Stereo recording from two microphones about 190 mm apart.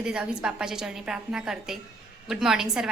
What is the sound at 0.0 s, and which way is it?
A woman's voice, 5° right (ahead or behind).